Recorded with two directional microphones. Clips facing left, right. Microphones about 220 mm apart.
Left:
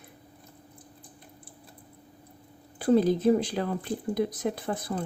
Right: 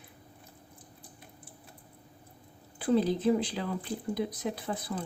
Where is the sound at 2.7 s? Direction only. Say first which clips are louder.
Left 4 dB; 45° left (ahead or behind).